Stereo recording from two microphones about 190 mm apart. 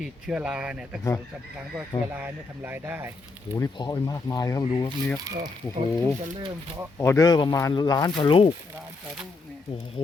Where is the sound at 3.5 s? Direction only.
20° left (ahead or behind).